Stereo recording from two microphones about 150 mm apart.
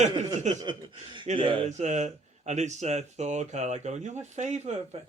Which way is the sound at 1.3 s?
35° right (ahead or behind).